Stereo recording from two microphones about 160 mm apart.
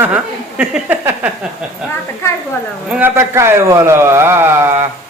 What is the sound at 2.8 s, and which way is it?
Speech, 10° right (ahead or behind).